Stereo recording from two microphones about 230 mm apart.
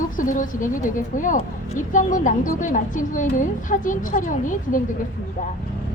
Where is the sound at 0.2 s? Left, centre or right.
Left.